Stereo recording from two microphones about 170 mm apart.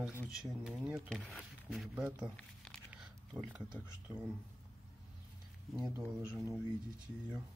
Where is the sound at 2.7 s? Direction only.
5° right (ahead or behind).